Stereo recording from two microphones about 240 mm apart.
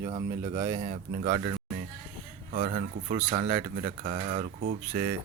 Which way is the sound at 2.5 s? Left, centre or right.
Right.